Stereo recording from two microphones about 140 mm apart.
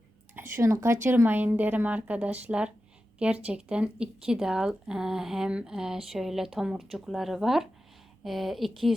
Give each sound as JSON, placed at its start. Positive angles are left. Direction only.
{"t": 0.3, "sound": "a woman's voice", "side_deg": -20}